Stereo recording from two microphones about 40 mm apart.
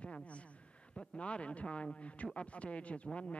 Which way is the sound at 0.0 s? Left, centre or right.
Left.